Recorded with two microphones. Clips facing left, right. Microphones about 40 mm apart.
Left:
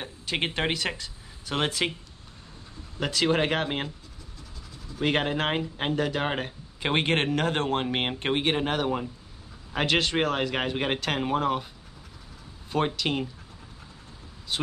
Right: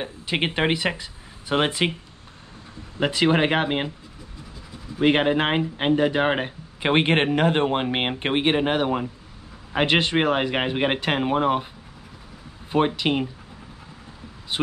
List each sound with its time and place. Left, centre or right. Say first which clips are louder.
0.0 s speech: right 4 dB; centre
3.0 s speech: right 5 dB; right
4.9 s speech: right 7 dB; right
12.7 s speech: right 5 dB; right
14.5 s speech: right 6 dB; right